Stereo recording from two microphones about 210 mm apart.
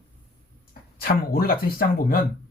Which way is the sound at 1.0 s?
45° left (ahead or behind).